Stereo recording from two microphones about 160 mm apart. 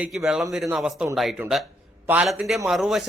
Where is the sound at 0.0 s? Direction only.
5° right (ahead or behind).